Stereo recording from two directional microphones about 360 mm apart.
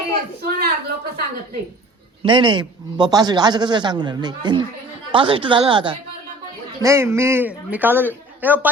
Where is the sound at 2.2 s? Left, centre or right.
Centre.